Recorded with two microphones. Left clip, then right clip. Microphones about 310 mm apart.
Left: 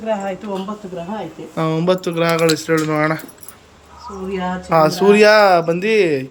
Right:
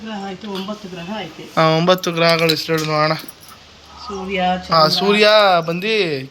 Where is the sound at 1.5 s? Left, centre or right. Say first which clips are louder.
Right 4 dB; centre.